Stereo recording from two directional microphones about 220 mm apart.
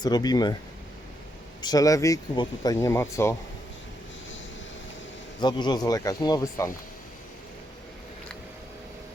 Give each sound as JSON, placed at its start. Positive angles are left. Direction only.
{"t": 0.0, "sound": "speech", "side_deg": 15}
{"t": 1.6, "sound": "speech", "side_deg": 15}
{"t": 5.4, "sound": "speech", "side_deg": 20}